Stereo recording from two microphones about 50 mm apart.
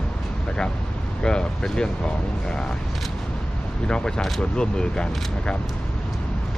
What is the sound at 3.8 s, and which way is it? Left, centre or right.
Speech, centre.